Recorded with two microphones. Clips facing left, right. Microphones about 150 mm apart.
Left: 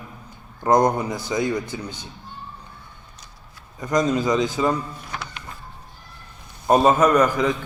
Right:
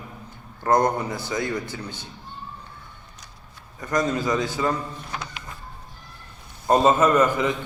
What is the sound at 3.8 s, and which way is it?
A man's voice, 20° left (ahead or behind).